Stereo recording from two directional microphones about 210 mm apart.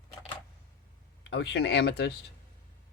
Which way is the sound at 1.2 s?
55° left (ahead or behind).